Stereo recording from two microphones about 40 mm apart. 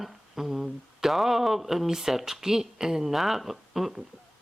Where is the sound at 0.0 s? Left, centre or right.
Centre.